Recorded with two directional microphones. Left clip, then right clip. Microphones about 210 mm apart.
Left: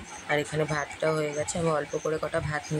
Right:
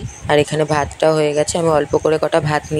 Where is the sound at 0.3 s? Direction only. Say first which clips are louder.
Right 13 dB; 35° right (ahead or behind).